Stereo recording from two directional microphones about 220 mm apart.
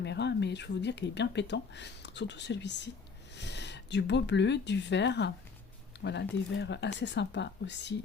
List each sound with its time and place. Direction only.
0.0 s speech: 50° left (ahead or behind)